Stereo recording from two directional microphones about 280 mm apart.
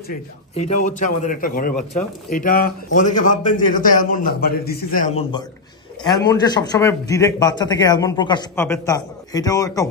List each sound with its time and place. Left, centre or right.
0.8 s a man's voice: left
6.1 s a man's voice: centre